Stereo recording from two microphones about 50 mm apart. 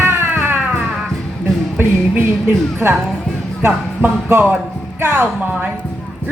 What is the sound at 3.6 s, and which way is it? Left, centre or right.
Speech, right.